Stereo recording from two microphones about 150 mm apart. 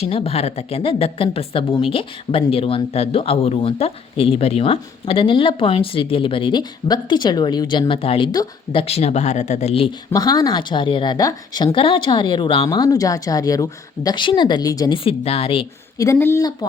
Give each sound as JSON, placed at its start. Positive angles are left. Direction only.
{"t": 0.0, "sound": "speech", "side_deg": 40}
{"t": 8.8, "sound": "speech", "side_deg": 40}
{"t": 10.1, "sound": "a woman's voice", "side_deg": 25}
{"t": 14.9, "sound": "speech", "side_deg": 40}
{"t": 16.1, "sound": "speech", "side_deg": 15}